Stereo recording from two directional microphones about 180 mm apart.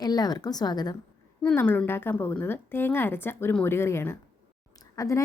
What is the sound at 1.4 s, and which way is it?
A woman's voice, 5° left (ahead or behind).